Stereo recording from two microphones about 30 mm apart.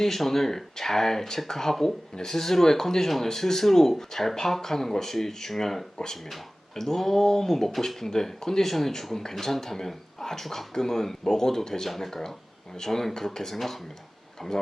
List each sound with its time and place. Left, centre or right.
0.0 s speech: centre
10.8 s speech: centre